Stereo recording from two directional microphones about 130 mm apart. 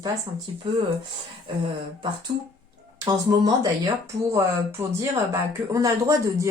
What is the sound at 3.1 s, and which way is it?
Speech, 30° right (ahead or behind).